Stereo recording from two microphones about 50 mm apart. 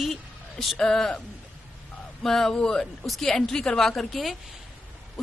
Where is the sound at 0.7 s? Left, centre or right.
Centre.